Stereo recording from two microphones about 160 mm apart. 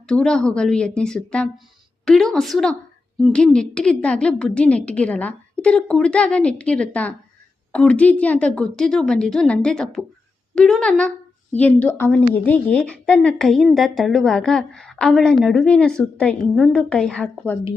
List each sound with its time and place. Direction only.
0.1 s a woman's voice: 5° left (ahead or behind)